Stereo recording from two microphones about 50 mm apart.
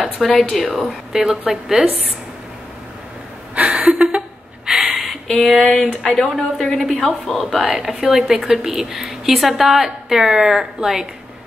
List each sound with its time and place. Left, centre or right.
0.4 s speech: centre
0.7 s a woman's voice: centre
3.5 s a sound: right
4.6 s a sound: centre
5.3 s a woman's voice: centre
7.7 s a woman's voice: centre